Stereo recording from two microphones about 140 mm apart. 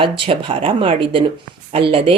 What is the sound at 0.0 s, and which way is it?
A woman's voice, 40° right (ahead or behind).